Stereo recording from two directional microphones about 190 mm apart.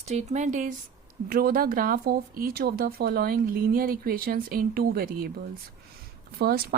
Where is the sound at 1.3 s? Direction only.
50° right (ahead or behind).